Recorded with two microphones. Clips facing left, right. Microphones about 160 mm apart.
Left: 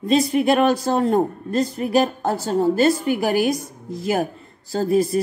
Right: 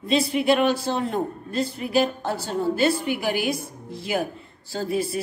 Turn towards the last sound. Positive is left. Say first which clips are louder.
# left 7 dB
turn(degrees=40)  # may be behind; listen again after turning